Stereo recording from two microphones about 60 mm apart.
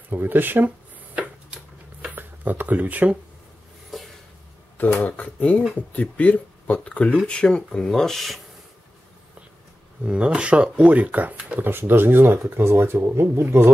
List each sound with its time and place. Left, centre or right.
0.1 s speech: right
0.7 s a sound: right
2.1 s speech: right
3.9 s a sound: centre
4.7 s speech: left; by 8.4 s centre
10.0 s speech: centre
11.3 s speech: centre
11.9 s speech: right